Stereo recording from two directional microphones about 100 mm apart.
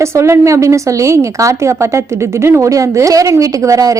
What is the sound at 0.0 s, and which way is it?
A woman's voice, 30° right (ahead or behind).